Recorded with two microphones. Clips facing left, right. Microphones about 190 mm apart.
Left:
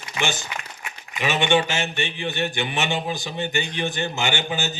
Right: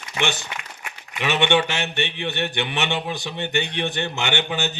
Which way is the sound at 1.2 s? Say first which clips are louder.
Right 1 dB; 65° right (ahead or behind).